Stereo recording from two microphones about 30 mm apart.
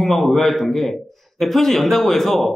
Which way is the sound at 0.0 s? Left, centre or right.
Centre.